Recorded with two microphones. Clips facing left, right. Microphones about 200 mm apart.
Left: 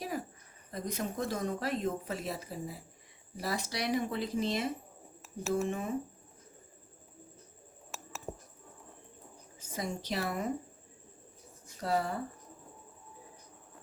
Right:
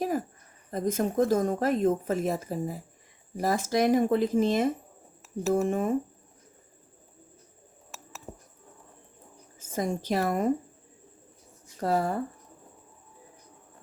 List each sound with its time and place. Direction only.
0.7 s a woman's voice: 50° right (ahead or behind)
9.7 s a woman's voice: 50° right (ahead or behind)
11.8 s a woman's voice: 45° right (ahead or behind)